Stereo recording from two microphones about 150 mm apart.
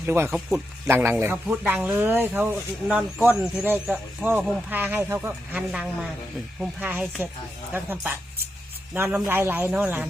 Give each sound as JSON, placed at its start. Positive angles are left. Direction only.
{"t": 0.0, "sound": "speech", "side_deg": -15}
{"t": 0.3, "sound": "speech", "side_deg": 0}
{"t": 0.9, "sound": "speech", "side_deg": -15}